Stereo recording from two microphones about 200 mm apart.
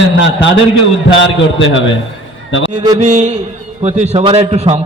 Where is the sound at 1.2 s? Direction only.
70° left (ahead or behind).